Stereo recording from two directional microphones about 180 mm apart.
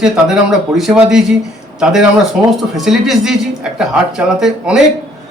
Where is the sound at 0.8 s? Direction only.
5° right (ahead or behind).